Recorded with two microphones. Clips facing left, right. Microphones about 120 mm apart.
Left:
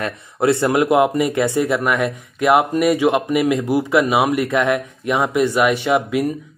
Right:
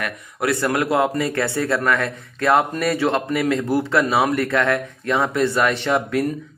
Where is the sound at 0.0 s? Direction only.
25° left (ahead or behind).